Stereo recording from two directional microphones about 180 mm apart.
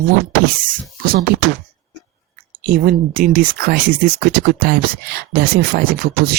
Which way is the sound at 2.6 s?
55° right (ahead or behind).